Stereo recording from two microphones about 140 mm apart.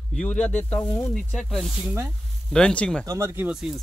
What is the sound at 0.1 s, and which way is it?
Speech, 10° left (ahead or behind).